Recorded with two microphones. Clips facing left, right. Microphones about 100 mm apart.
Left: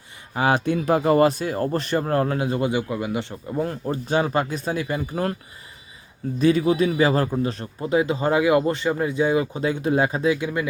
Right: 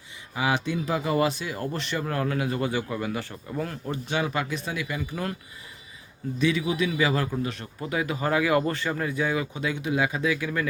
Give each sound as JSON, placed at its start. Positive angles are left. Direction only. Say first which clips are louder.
{"t": 0.3, "sound": "speech", "louder": "left 5 dB", "side_deg": 45}
{"t": 6.4, "sound": "speech", "louder": "left 6 dB", "side_deg": 40}
{"t": 10.3, "sound": "speech", "louder": "left 3 dB", "side_deg": 20}